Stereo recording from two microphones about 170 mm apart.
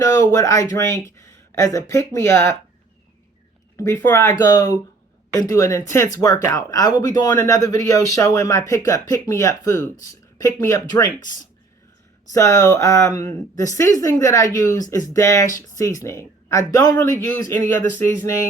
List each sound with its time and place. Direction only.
0.0 s speech: 20° left (ahead or behind)
3.8 s speech: 15° left (ahead or behind)
12.3 s speech: 20° left (ahead or behind)